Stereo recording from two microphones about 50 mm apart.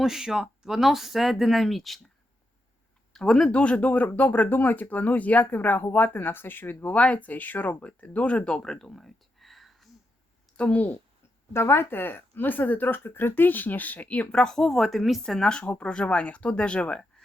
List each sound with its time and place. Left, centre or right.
0.0 s speech: centre
3.1 s speech: centre
3.5 s speech: left
6.8 s speech: left
8.6 s a sound: centre
10.6 s speech: left
11.5 s speech: left
13.0 s speech: left
14.3 s speech: centre
15.2 s speech: centre
15.6 s speech: left